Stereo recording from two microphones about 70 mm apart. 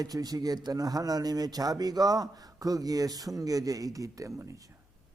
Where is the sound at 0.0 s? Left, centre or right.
Right.